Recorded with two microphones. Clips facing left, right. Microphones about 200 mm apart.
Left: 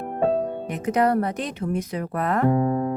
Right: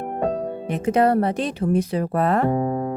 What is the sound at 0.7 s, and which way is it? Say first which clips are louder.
Speech: right 3 dB; 30° right (ahead or behind).